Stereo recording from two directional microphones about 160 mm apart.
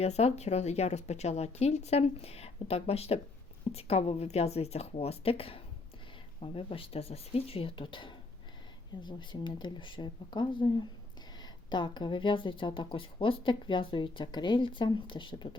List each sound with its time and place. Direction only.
0.0 s speech: 40° left (ahead or behind)